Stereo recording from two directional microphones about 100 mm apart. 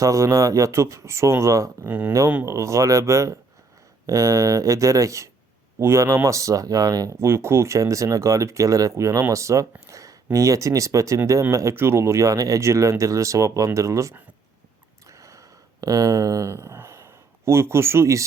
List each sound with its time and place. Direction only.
0.0 s speech: 35° right (ahead or behind)
1.9 s speech: 15° right (ahead or behind)
2.4 s speech: 30° right (ahead or behind)
15.0 s a sound: 35° right (ahead or behind)